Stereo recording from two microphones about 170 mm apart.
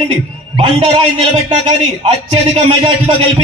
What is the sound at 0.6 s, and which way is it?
Speech, 35° right (ahead or behind).